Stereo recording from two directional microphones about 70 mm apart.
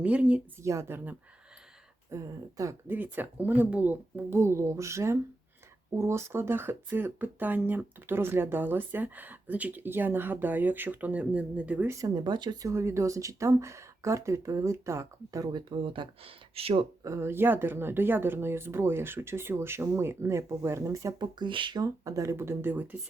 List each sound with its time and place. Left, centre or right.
0.0 s speech: centre
0.6 s speech: right
2.0 s speech: right
2.8 s speech: right
4.3 s speech: right
12.0 s speech: right
12.6 s speech: right
17.0 s speech: right
21.2 s speech: right